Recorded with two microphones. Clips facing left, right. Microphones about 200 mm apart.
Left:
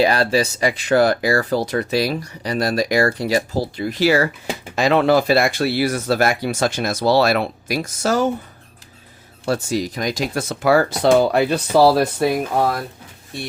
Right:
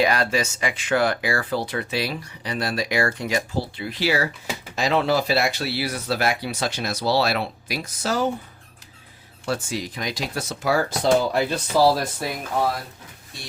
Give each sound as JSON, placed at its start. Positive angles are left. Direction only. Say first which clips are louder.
{"t": 0.0, "sound": "speech", "louder": "left 5 dB", "side_deg": 30}
{"t": 4.7, "sound": "speech", "louder": "left 6 dB", "side_deg": 60}
{"t": 9.5, "sound": "speech", "louder": "left 6 dB", "side_deg": 40}
{"t": 10.5, "sound": "speech", "louder": "left 6 dB", "side_deg": 65}